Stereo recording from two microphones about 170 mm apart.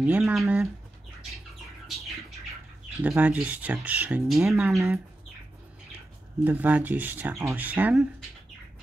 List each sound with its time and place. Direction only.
0.0 s speech: 5° right (ahead or behind)
3.0 s speech: 10° right (ahead or behind)
6.4 s speech: 10° right (ahead or behind)